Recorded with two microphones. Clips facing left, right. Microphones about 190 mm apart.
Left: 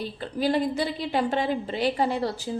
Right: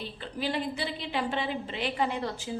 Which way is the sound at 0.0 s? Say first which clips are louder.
Left 7 dB; 40° left (ahead or behind).